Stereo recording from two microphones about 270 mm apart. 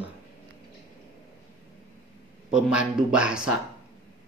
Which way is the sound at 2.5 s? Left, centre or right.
Centre.